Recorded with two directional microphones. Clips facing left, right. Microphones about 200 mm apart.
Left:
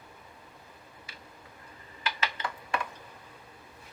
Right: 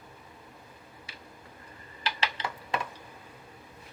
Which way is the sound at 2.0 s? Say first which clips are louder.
Right 1 dB; 25° right (ahead or behind).